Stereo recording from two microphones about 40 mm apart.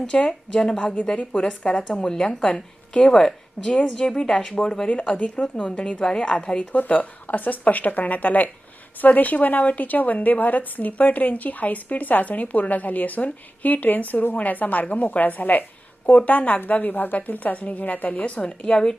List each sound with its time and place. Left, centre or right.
0.3 s a woman's voice: centre
1.4 s a woman's voice: left
4.9 s a woman's voice: left
6.7 s a woman's voice: left